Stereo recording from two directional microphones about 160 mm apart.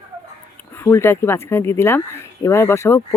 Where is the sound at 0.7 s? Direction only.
15° left (ahead or behind).